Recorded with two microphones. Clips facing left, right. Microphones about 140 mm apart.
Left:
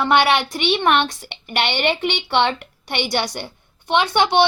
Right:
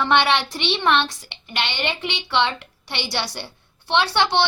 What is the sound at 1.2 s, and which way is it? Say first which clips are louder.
A woman's voice: left 5 dB; 60° left (ahead or behind).